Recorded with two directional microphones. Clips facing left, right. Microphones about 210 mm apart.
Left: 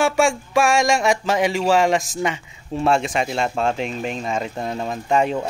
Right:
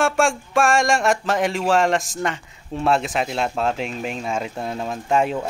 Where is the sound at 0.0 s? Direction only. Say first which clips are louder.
Left 1 dB; centre (ahead or behind).